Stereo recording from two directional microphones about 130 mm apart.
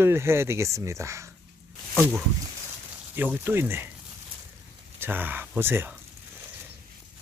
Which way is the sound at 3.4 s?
15° right (ahead or behind).